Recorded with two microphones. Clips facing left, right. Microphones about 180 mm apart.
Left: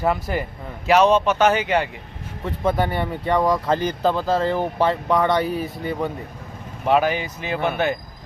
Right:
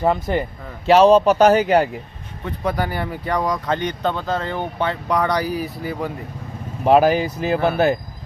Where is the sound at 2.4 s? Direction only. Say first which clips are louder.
Left 2 dB; centre (ahead or behind).